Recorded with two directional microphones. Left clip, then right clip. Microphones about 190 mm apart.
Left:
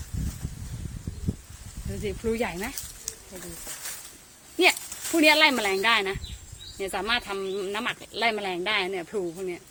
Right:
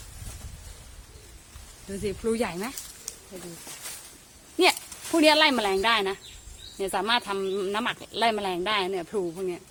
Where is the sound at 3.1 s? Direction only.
15° left (ahead or behind).